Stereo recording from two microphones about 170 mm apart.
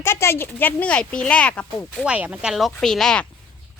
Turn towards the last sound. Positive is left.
turn(degrees=5)  # may be behind; listen again after turning